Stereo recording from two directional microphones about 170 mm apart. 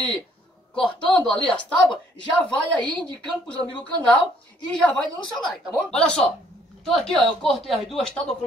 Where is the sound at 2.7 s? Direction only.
5° left (ahead or behind).